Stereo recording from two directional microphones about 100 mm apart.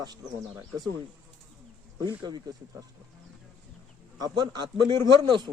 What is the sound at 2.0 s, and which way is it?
Speech, 45° right (ahead or behind).